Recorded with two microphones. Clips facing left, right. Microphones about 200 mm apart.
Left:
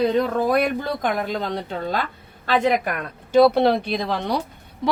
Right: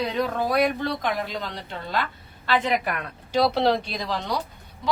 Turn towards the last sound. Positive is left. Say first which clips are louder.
# left 5 dB
turn(degrees=55)  # may be behind; listen again after turning